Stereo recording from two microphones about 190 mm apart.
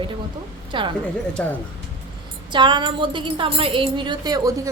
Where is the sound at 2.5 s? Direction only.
25° right (ahead or behind).